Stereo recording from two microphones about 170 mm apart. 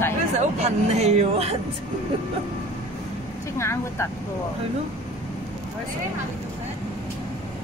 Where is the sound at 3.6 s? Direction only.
15° left (ahead or behind).